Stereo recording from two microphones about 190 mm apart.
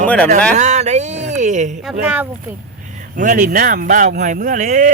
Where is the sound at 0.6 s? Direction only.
35° right (ahead or behind).